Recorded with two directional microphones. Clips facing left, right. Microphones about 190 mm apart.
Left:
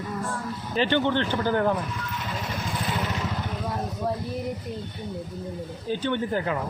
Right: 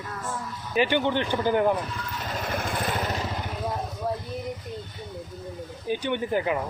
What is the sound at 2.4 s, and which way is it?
Vehicle, 55° right (ahead or behind).